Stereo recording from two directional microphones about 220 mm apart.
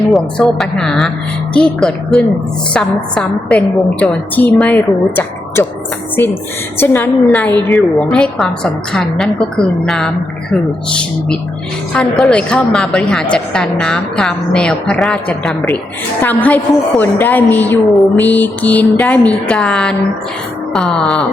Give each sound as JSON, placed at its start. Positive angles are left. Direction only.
{"t": 0.1, "sound": "a woman's voice", "side_deg": 0}
{"t": 6.7, "sound": "a woman's voice", "side_deg": 10}